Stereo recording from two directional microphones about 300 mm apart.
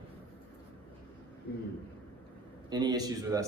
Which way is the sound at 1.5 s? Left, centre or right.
Left.